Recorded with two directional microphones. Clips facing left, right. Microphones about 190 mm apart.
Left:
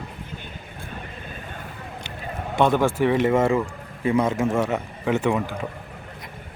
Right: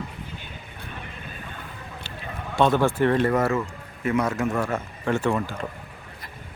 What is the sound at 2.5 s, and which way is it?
A man's voice, 15° left (ahead or behind).